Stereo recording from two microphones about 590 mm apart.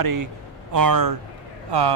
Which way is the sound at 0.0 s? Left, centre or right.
Right.